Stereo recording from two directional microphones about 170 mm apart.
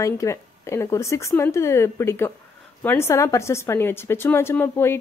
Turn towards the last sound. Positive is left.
turn(degrees=15)  # may be behind; listen again after turning